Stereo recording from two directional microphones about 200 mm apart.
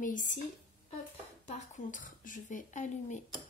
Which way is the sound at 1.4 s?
35° left (ahead or behind).